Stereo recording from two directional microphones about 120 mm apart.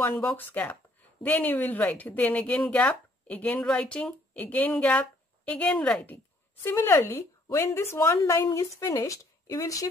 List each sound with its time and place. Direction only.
0.0 s a woman's voice: 15° left (ahead or behind)